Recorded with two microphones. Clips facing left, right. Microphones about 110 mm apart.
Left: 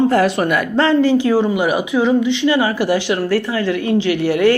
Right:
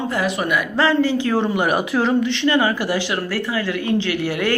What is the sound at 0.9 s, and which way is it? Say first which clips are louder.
Speech: left 5 dB; 15° left (ahead or behind).